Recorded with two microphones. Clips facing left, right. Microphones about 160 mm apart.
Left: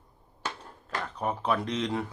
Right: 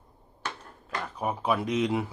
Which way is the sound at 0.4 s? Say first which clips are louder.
Left 1 dB; centre (ahead or behind).